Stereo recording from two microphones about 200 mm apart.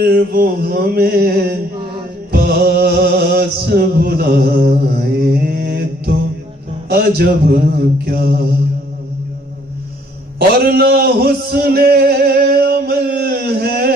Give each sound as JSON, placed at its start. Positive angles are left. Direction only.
{"t": 0.0, "sound": "male singing", "side_deg": -50}
{"t": 2.3, "sound": "music", "side_deg": -50}
{"t": 6.8, "sound": "male singing", "side_deg": -50}
{"t": 10.6, "sound": "male singing", "side_deg": -50}